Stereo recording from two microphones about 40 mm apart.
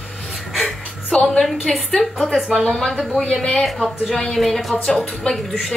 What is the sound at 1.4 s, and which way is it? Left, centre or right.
Speech, centre.